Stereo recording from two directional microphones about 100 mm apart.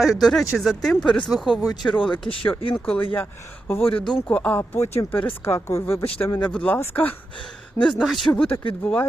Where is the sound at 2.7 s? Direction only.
10° left (ahead or behind).